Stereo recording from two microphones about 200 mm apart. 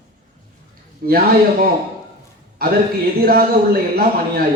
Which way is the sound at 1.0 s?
45° right (ahead or behind).